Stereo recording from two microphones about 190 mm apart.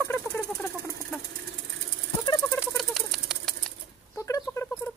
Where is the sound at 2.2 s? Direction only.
20° left (ahead or behind).